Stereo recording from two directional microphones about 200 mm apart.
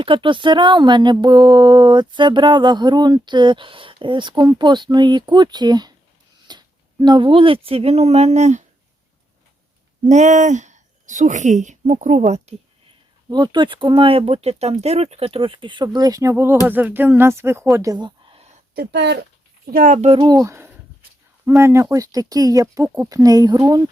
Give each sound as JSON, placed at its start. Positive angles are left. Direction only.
{"t": 0.0, "sound": "speech", "side_deg": -25}
{"t": 6.5, "sound": "a sound", "side_deg": -20}
{"t": 7.0, "sound": "speech", "side_deg": -25}
{"t": 10.1, "sound": "speech", "side_deg": -35}
{"t": 13.3, "sound": "speech", "side_deg": -20}
{"t": 18.7, "sound": "speech", "side_deg": -55}
{"t": 19.7, "sound": "speech", "side_deg": -40}